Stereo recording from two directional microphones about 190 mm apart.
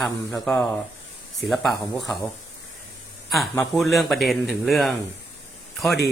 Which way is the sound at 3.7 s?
Centre (ahead or behind).